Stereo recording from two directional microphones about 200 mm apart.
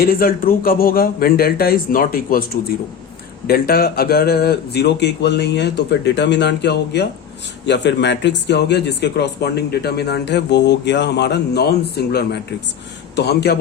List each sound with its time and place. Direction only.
0.0 s speech: 45° left (ahead or behind)